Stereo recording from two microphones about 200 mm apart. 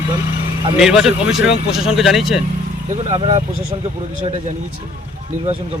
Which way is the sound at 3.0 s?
30° right (ahead or behind).